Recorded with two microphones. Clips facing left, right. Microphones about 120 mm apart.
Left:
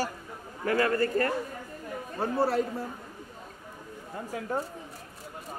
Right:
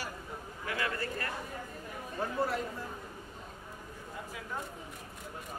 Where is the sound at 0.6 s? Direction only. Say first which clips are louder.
Left 11 dB; 50° left (ahead or behind).